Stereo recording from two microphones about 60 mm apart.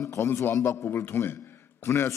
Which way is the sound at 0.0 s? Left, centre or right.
Left.